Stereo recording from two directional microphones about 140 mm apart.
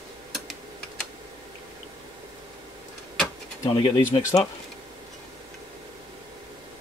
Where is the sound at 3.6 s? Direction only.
40° left (ahead or behind).